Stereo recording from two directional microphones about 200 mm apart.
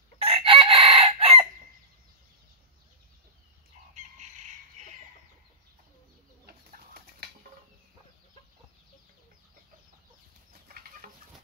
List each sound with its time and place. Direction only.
0.2 s chicken: 30° right (ahead or behind)
6.4 s bird: 50° right (ahead or behind)
11.0 s chicken: 45° right (ahead or behind)